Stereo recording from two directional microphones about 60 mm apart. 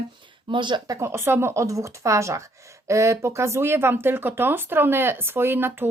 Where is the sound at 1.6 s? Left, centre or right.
Right.